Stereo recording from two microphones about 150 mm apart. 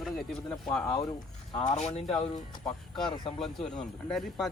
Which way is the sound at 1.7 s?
45° left (ahead or behind).